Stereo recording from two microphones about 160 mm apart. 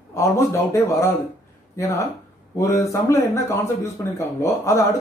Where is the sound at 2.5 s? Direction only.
20° left (ahead or behind).